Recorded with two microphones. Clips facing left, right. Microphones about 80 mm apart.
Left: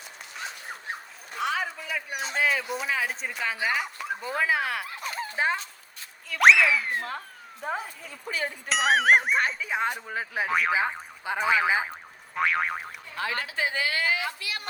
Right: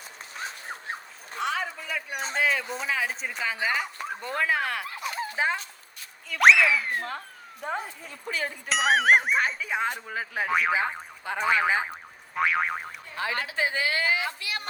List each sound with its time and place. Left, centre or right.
1.4 s a sound: centre
2.3 s speech: centre
11.9 s boing: centre
13.1 s a woman's voice: right